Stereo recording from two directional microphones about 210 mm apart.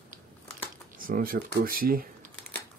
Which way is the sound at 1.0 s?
40° right (ahead or behind).